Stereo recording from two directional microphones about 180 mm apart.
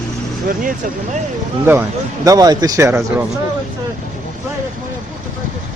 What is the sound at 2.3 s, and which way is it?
Speech, 20° right (ahead or behind).